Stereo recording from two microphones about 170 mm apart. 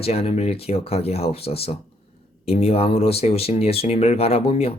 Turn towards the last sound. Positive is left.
turn(degrees=35)  # may be behind; listen again after turning